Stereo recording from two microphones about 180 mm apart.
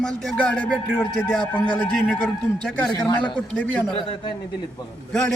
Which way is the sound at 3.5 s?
10° left (ahead or behind).